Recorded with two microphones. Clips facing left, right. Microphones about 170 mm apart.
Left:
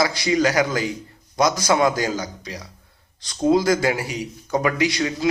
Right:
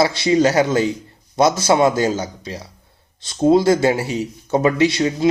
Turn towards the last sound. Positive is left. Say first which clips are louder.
# right 5 dB
turn(degrees=-25)  # may be behind; listen again after turning